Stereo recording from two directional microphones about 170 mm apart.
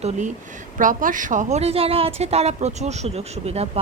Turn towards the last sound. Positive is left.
turn(degrees=-40)  # may be behind; listen again after turning